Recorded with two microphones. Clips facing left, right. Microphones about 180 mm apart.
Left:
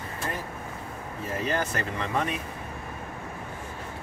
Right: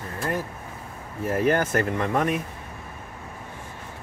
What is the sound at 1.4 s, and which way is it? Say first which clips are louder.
Speech: right 7 dB; 55° right (ahead or behind).